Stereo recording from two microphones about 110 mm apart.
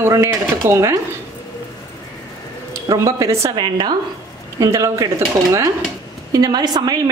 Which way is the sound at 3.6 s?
45° right (ahead or behind).